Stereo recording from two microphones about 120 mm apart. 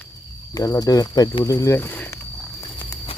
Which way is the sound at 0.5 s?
30° left (ahead or behind).